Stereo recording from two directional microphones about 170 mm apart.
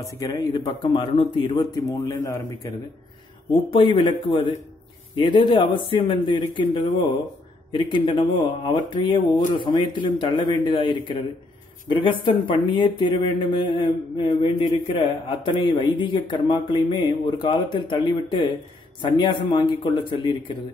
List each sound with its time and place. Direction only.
0.0 s speech: 20° left (ahead or behind)
3.5 s speech: 30° left (ahead or behind)